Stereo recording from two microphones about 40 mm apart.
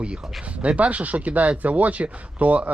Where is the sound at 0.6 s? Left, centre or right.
Right.